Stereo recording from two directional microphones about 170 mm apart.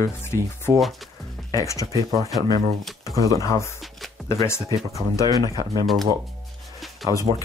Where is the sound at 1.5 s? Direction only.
20° left (ahead or behind).